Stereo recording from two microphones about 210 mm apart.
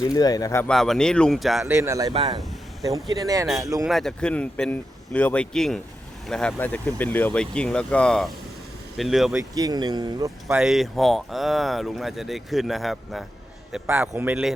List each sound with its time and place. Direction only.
0.0 s speech: 15° left (ahead or behind)
0.7 s speech: centre (ahead or behind)
1.7 s a man's voice: 15° right (ahead or behind)
3.8 s speech: centre (ahead or behind)
9.3 s speech: 15° right (ahead or behind)
10.5 s speech: centre (ahead or behind)
13.7 s a man's voice: 10° right (ahead or behind)